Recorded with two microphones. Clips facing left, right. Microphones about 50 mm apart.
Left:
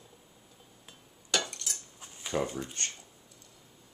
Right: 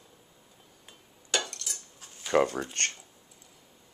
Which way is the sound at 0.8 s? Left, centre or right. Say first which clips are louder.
Even; centre.